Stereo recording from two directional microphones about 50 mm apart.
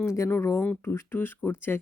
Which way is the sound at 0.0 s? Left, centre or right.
Left.